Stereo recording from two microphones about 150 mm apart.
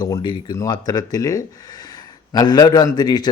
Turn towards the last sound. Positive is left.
turn(degrees=25)  # may be behind; listen again after turning